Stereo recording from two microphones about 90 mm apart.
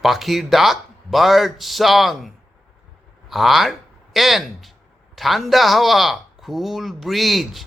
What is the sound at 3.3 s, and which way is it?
Speech, centre (ahead or behind).